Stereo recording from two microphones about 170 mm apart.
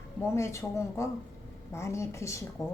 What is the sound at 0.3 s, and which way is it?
A woman's voice, 15° left (ahead or behind).